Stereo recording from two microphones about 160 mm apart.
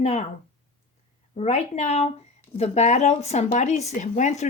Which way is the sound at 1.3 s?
45° left (ahead or behind).